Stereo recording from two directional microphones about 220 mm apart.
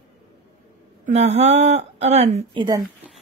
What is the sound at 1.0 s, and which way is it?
Speech, 30° right (ahead or behind).